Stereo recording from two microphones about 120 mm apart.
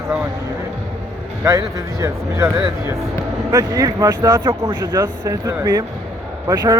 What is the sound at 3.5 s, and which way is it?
Speech, 30° right (ahead or behind).